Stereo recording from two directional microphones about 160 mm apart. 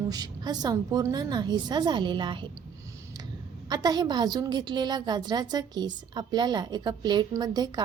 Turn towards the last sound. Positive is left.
turn(degrees=-25)  # may be behind; listen again after turning